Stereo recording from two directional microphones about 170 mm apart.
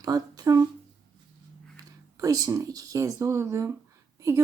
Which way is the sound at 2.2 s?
20° right (ahead or behind).